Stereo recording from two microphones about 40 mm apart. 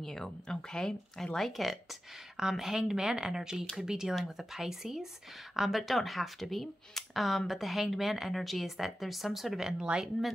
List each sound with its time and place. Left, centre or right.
0.0 s speech: centre
2.5 s speech: centre
9.6 s speech: centre